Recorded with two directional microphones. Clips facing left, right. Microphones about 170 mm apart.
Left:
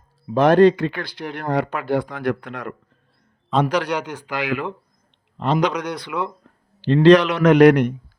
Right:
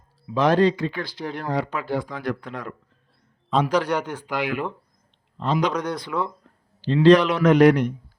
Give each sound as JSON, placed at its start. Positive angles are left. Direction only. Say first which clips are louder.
{"t": 0.3, "sound": "a man's voice", "louder": "left 5 dB", "side_deg": 60}
{"t": 5.4, "sound": "a man's voice", "louder": "left 3 dB", "side_deg": 70}